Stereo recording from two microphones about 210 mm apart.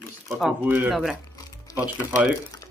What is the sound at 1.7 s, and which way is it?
Speech, 15° left (ahead or behind).